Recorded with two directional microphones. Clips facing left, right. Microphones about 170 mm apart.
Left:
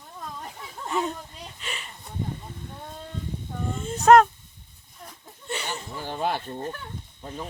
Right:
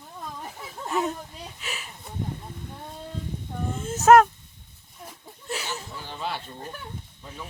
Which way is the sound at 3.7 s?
Centre (ahead or behind).